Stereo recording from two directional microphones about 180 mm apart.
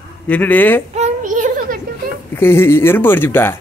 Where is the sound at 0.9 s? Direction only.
40° right (ahead or behind).